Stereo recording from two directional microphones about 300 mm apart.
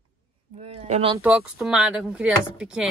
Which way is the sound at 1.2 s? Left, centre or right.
Centre.